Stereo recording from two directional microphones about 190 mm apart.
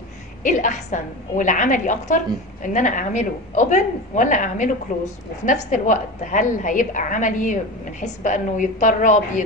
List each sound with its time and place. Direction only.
0.4 s a woman's voice: 40° left (ahead or behind)